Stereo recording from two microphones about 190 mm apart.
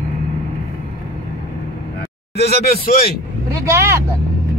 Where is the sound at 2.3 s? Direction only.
60° left (ahead or behind).